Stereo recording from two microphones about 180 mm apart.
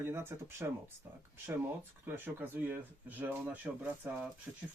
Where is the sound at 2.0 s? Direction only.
10° right (ahead or behind).